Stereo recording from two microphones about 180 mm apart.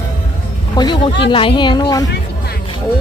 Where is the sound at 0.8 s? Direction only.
25° left (ahead or behind).